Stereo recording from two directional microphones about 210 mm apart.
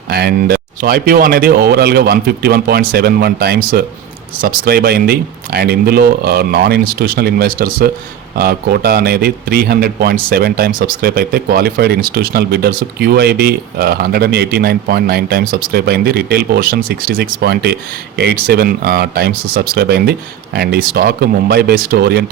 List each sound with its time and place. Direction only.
0.1 s a man's voice: 50° right (ahead or behind)